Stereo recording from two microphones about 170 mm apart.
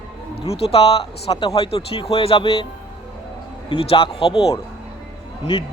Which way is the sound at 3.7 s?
35° left (ahead or behind).